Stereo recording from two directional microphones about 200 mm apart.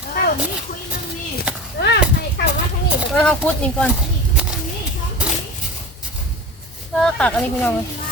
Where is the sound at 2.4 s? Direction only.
60° left (ahead or behind).